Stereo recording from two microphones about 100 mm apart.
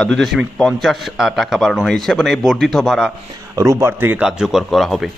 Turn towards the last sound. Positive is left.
turn(degrees=0)  # may be behind; listen again after turning